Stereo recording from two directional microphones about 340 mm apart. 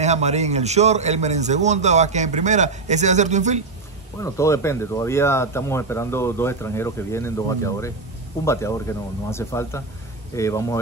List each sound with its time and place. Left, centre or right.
0.0 s a man's voice: centre
4.2 s speech: centre